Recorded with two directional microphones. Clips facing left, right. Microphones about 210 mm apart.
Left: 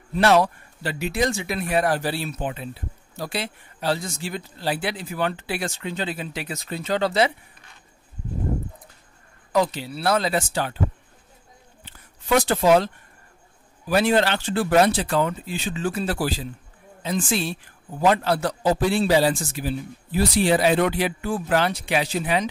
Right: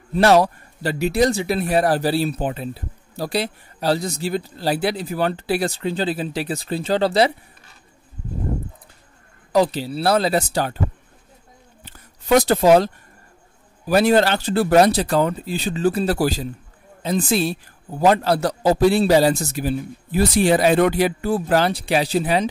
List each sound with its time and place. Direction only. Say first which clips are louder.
0.1 s speech: right 3 dB; 40° right (ahead or behind)
9.5 s speech: right 4 dB; 35° right (ahead or behind)
11.8 s a sound: right 3 dB; 40° right (ahead or behind)
13.8 s speech: right 4 dB; 40° right (ahead or behind)